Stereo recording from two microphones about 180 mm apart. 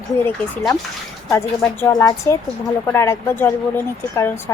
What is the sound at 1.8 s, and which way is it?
A woman's voice, 20° left (ahead or behind).